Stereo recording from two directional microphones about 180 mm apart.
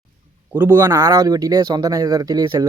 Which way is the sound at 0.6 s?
10° right (ahead or behind).